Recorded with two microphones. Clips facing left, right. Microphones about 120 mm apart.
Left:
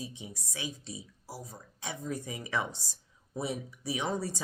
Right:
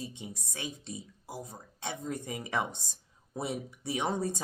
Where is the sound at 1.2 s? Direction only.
25° right (ahead or behind).